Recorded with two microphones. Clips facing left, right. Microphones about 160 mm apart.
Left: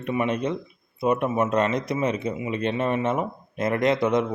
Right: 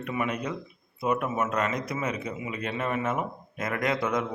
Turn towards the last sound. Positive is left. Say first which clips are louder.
# left 6 dB
turn(degrees=20)  # may be behind; listen again after turning